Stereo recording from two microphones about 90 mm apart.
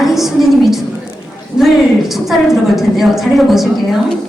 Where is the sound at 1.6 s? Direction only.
5° right (ahead or behind).